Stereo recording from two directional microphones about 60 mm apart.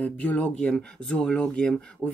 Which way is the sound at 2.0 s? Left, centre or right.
Left.